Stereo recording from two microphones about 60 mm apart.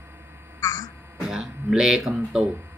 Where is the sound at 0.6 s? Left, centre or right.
Left.